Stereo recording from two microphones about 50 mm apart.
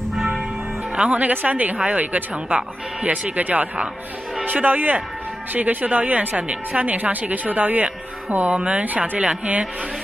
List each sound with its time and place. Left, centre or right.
0.9 s a woman's voice: right
8.8 s a woman's voice: right
9.2 s speech: right